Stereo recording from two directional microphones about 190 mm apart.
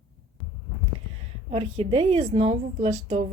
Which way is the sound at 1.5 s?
30° right (ahead or behind).